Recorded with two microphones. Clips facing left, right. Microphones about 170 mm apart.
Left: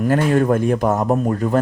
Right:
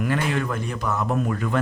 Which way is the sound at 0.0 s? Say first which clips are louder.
Left 8 dB; 45° left (ahead or behind).